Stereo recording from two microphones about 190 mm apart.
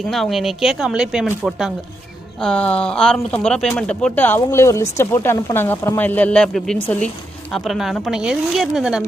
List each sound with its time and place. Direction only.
0.0 s speech: centre (ahead or behind)